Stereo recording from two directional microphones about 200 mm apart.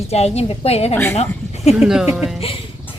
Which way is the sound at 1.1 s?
35° left (ahead or behind).